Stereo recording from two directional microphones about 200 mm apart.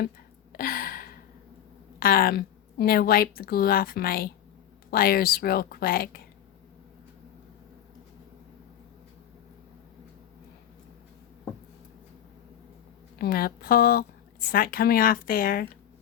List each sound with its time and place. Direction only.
0.5 s gasp: 45° left (ahead or behind)
2.0 s a woman's voice: 45° left (ahead or behind)
13.1 s a woman's voice: 50° left (ahead or behind)